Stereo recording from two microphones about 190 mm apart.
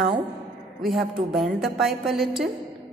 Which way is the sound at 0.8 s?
Centre (ahead or behind).